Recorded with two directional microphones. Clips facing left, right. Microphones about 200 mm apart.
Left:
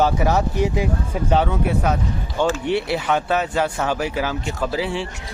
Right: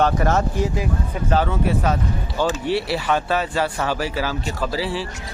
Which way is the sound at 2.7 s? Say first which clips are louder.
Left 1 dB; 20° left (ahead or behind).